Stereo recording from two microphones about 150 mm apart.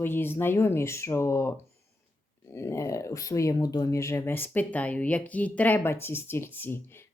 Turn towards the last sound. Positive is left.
turn(degrees=15)  # may be behind; listen again after turning